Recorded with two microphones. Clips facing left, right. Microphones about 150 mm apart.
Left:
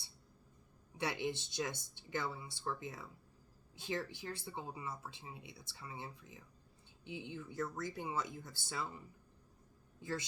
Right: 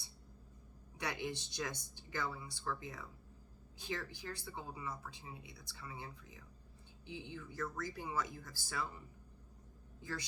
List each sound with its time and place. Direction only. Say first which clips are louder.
0.9 s speech: left 3 dB; 25° left (ahead or behind)
10.0 s speech: left 3 dB; 25° left (ahead or behind)